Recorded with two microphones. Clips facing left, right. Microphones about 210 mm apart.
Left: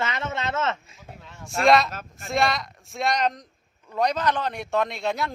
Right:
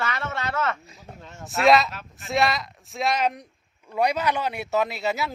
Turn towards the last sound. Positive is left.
turn(degrees=-5)  # may be behind; listen again after turning